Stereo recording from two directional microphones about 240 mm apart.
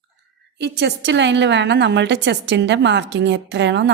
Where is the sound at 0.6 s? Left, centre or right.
Right.